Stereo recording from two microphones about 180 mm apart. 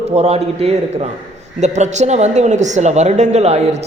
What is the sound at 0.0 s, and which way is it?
A woman's voice, 35° right (ahead or behind).